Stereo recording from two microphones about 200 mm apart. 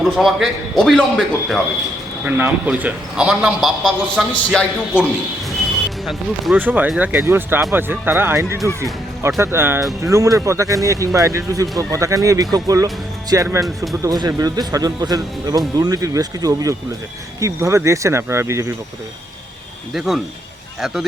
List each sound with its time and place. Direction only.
0.0 s a man's voice: centre (ahead or behind)
2.2 s a man's voice: 10° right (ahead or behind)
6.1 s speech: centre (ahead or behind)
19.9 s a man's voice: centre (ahead or behind)